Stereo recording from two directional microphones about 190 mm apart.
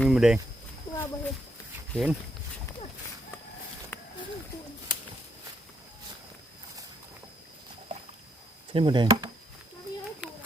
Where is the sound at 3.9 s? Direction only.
10° left (ahead or behind).